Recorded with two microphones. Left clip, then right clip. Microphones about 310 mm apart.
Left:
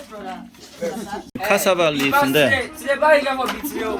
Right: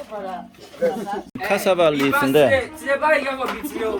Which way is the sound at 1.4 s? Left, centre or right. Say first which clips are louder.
Even; centre.